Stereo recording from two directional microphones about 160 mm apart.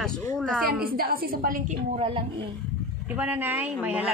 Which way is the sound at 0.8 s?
65° right (ahead or behind).